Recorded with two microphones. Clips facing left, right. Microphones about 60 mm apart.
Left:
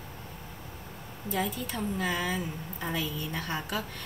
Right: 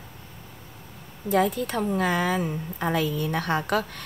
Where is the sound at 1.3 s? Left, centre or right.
Right.